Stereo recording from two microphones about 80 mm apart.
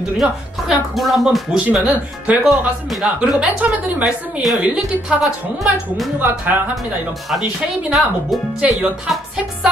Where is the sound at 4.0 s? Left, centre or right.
Centre.